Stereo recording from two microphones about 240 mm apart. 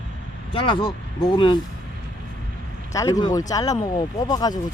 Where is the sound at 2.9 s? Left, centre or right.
Centre.